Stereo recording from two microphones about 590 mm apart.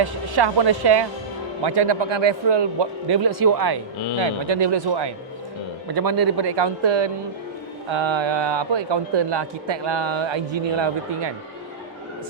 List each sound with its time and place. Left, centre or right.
0.0 s a man's voice: right
4.2 s a man's voice: right